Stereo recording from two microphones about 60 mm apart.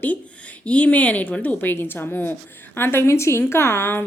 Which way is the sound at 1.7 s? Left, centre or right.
Left.